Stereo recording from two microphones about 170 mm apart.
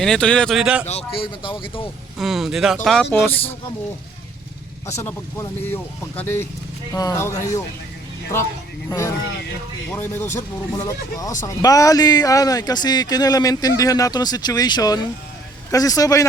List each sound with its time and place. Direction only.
0.0 s a man's voice: 5° left (ahead or behind)
0.9 s speech: 35° left (ahead or behind)
2.1 s a man's voice: centre (ahead or behind)
4.9 s speech: 15° left (ahead or behind)
8.9 s speech: 20° left (ahead or behind)